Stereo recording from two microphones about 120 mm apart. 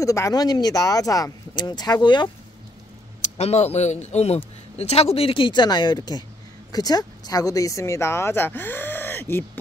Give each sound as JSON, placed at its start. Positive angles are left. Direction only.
{"t": 0.0, "sound": "speech", "side_deg": 25}
{"t": 3.2, "sound": "a man's voice", "side_deg": 65}